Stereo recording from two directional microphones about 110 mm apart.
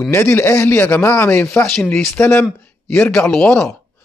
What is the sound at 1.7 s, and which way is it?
Speech, 5° left (ahead or behind).